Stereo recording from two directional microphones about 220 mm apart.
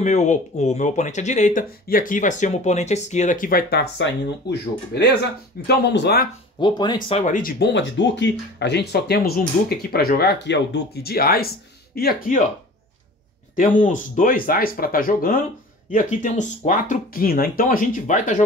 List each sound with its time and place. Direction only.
0.0 s speech: 30° left (ahead or behind); by 6.2 s 50° left (ahead or behind)
6.6 s speech: 20° left (ahead or behind); by 12.4 s 40° left (ahead or behind)
13.6 s speech: 35° left (ahead or behind)